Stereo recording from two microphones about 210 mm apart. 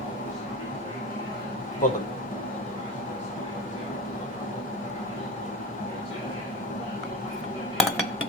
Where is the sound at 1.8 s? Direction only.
40° left (ahead or behind).